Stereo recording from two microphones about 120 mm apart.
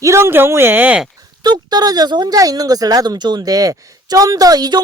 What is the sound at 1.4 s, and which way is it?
Speech, 35° right (ahead or behind).